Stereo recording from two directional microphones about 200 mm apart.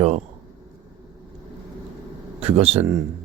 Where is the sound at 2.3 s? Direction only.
30° right (ahead or behind).